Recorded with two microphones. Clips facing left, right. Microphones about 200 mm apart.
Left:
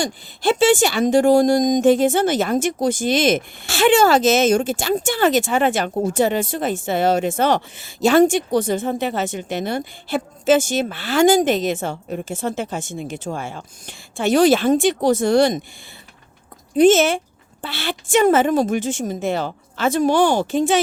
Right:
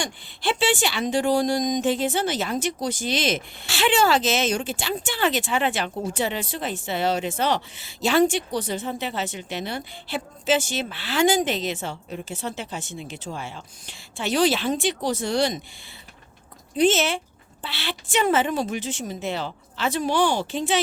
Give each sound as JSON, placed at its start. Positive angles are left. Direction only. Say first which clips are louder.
{"t": 0.0, "sound": "speech", "louder": "left 7 dB", "side_deg": 45}
{"t": 16.7, "sound": "speech", "louder": "left 7 dB", "side_deg": 50}